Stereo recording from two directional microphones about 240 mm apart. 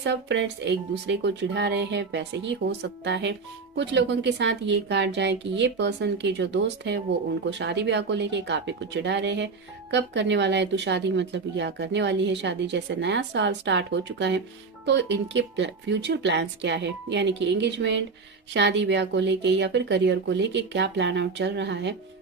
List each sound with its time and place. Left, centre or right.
0.0 s speech: right